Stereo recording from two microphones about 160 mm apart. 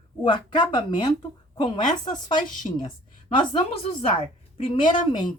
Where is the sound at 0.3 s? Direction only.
30° left (ahead or behind).